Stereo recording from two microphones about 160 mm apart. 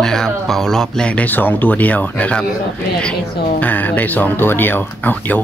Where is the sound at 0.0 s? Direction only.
5° left (ahead or behind).